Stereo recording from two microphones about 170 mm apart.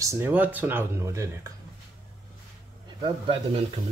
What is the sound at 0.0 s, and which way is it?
Speech, 15° right (ahead or behind).